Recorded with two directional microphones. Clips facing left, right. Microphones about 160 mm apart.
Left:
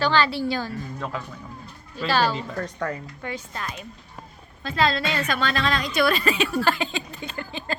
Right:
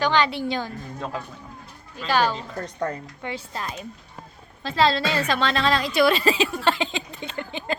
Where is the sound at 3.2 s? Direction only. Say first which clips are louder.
Right 1 dB; 30° right (ahead or behind).